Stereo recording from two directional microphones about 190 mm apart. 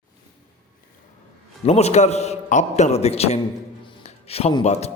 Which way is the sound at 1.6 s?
35° left (ahead or behind).